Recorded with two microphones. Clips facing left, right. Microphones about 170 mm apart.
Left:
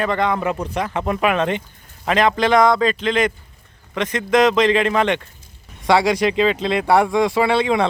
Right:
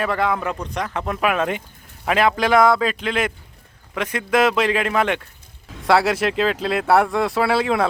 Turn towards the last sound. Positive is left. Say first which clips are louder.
# left 2 dB
turn(degrees=-5)  # may be behind; listen again after turning